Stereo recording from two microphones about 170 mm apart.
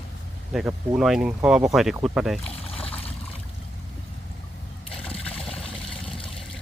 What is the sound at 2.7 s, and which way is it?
Trickle, 35° left (ahead or behind).